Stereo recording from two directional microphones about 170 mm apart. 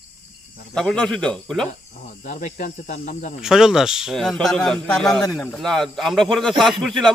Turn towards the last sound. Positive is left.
turn(degrees=0)  # may be behind; listen again after turning